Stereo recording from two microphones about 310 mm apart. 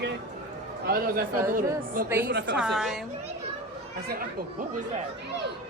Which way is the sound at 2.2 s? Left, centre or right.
Right.